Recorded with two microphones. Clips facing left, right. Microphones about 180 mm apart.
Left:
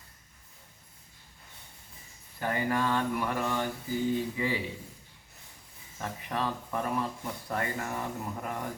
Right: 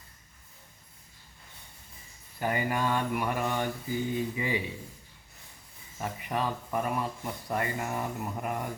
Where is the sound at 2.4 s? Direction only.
10° right (ahead or behind).